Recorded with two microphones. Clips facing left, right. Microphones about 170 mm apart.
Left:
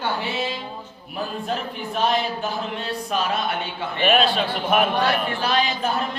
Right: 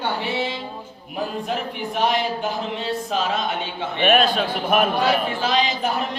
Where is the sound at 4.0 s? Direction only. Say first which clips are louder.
Right 1 dB; 50° right (ahead or behind).